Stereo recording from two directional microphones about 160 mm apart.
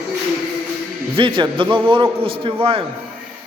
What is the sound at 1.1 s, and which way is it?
A man's voice, 30° right (ahead or behind).